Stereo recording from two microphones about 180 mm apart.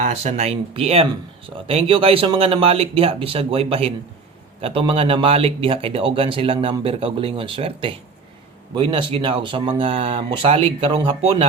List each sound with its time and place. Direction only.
0.0 s speech: 40° right (ahead or behind)